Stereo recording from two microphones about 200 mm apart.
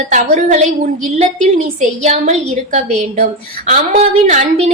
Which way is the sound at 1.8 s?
35° right (ahead or behind).